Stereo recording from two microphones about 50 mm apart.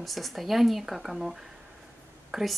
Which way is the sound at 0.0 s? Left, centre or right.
Centre.